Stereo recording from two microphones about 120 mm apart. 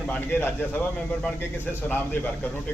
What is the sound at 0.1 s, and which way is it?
Speech, 15° left (ahead or behind).